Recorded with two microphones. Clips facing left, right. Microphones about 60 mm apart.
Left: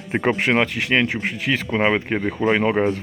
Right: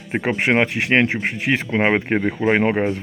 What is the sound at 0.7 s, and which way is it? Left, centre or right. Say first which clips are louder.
A man's voice: right 2 dB; right.